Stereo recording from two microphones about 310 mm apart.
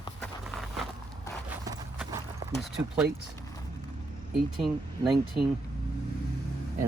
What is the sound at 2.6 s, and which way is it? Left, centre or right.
Speech, centre.